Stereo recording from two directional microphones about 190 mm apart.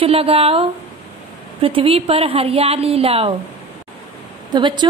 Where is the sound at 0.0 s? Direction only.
30° right (ahead or behind).